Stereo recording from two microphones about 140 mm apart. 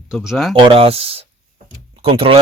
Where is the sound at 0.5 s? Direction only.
40° right (ahead or behind).